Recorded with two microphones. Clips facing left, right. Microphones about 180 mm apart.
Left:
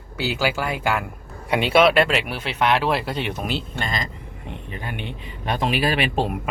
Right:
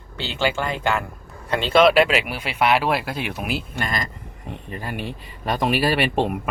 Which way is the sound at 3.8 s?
25° left (ahead or behind).